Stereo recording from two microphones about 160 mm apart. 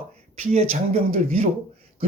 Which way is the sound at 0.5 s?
40° right (ahead or behind).